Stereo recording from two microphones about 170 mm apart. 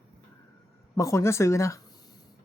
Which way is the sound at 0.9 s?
15° left (ahead or behind).